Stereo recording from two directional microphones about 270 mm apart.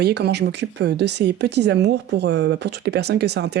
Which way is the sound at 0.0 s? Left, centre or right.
Right.